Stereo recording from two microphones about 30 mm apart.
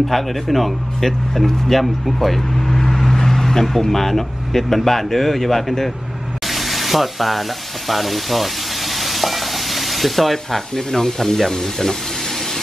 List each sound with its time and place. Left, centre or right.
0.1 s speech: centre
6.4 s frying: centre
11.5 s speech: centre